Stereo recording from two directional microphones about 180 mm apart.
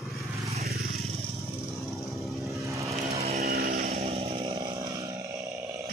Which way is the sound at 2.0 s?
Centre (ahead or behind).